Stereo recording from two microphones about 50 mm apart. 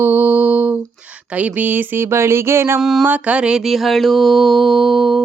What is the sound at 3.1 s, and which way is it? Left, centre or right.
Mantra, right.